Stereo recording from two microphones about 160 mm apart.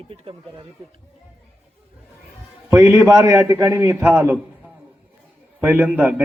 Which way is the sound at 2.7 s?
15° right (ahead or behind).